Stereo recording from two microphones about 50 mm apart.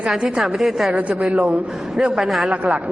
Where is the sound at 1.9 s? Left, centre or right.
Centre.